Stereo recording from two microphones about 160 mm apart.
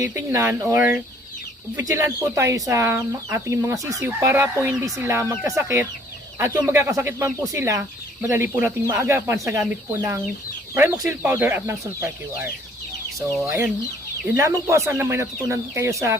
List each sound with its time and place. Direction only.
0.1 s speech: 15° right (ahead or behind)